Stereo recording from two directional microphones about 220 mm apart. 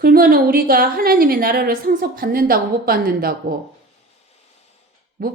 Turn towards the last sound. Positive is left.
turn(degrees=-40)  # may be behind; listen again after turning